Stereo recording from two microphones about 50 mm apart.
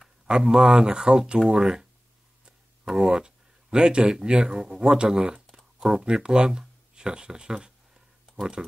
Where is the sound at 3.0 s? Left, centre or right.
Centre.